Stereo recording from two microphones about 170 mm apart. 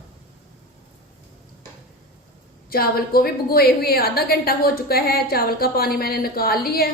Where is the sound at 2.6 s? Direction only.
60° left (ahead or behind).